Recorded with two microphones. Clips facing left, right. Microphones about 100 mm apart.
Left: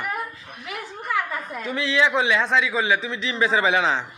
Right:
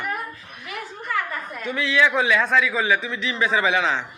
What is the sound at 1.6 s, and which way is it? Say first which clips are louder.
A man's voice: right 1 dB; 30° left (ahead or behind).